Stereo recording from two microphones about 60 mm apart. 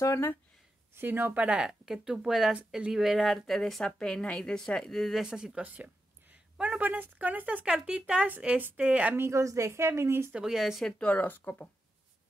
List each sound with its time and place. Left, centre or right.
0.9 s speech: right
1.3 s speech: right; by 2.5 s centre
2.5 s speech: centre
2.9 s speech: centre
5.2 s speech: centre
5.6 s a sound: right
6.8 s speech: right
9.3 s a woman's voice: right
9.7 s a woman's voice: right
10.4 s speech: centre
11.0 s speech: left